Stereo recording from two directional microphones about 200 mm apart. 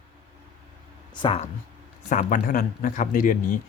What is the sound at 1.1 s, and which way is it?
Speech, 25° left (ahead or behind).